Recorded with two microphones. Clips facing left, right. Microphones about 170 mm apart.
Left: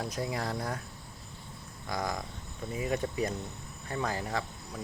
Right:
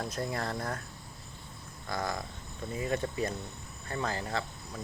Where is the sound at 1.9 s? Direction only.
15° left (ahead or behind).